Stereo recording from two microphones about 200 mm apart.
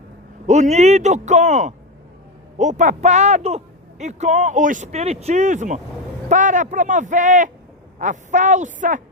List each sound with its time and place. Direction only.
0.4 s speech: 35° right (ahead or behind)